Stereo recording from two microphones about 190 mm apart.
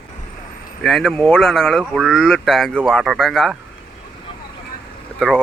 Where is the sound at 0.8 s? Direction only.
Centre (ahead or behind).